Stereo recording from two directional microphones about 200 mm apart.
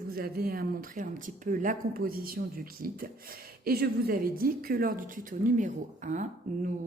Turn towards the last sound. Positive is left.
turn(degrees=-40)  # may be behind; listen again after turning